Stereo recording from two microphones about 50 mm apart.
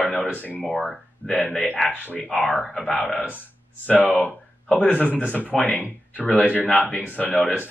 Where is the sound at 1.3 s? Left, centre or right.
Left.